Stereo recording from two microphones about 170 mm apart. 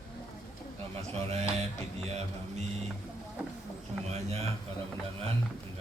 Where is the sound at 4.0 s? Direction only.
40° right (ahead or behind).